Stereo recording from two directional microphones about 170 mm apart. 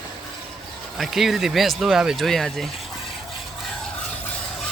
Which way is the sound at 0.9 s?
Centre (ahead or behind).